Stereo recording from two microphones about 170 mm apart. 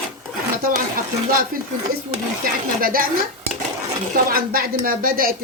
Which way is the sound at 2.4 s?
55° right (ahead or behind).